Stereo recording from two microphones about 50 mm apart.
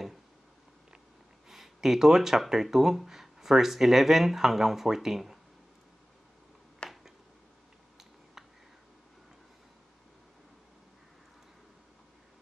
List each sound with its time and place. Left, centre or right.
1.5 s speech: centre
6.8 s finger snapping: centre